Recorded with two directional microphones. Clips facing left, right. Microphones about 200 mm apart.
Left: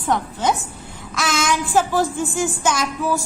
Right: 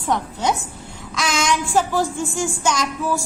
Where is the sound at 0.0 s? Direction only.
Centre (ahead or behind).